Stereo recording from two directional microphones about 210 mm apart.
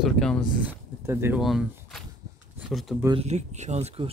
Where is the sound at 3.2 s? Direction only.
30° right (ahead or behind).